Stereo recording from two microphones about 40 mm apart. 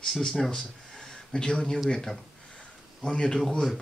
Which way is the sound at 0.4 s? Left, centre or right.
Centre.